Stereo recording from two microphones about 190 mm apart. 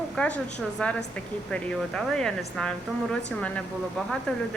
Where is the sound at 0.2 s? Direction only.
5° left (ahead or behind).